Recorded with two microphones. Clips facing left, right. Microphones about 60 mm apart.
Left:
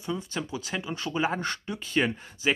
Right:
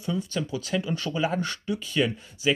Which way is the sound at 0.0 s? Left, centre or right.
Left.